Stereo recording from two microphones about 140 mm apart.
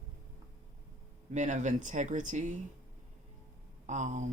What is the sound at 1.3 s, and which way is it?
Speech, 60° right (ahead or behind).